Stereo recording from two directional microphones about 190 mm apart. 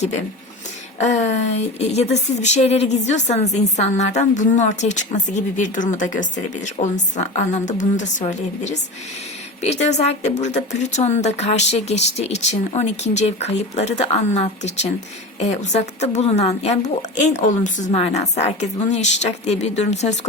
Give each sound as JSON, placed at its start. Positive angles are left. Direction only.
{"t": 0.9, "sound": "speech", "side_deg": 35}